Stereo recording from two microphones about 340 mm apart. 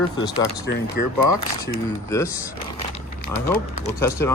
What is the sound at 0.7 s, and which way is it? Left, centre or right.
Speech, left.